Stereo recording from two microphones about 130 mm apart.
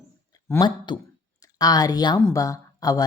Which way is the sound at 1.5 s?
30° left (ahead or behind).